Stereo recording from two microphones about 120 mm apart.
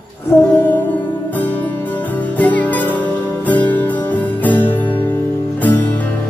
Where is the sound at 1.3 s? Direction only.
15° left (ahead or behind).